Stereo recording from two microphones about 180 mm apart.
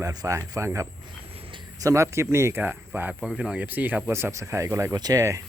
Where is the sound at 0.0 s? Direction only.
20° right (ahead or behind).